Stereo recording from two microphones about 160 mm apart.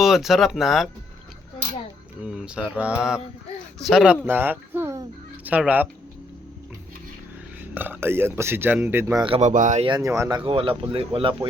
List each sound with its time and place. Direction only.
0.0 s mantra: centre (ahead or behind)
2.2 s mantra: 5° right (ahead or behind)
3.8 s a man's voice: centre (ahead or behind)
7.6 s a man's voice: 10° right (ahead or behind)
9.2 s speech: 35° right (ahead or behind)
9.5 s speech: 50° right (ahead or behind)
9.8 s speech: 25° right (ahead or behind)